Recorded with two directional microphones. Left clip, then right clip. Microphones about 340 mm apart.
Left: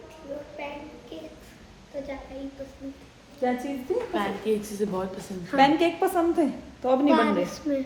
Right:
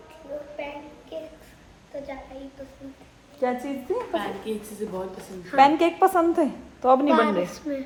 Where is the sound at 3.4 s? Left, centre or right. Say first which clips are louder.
Right 1 dB; centre.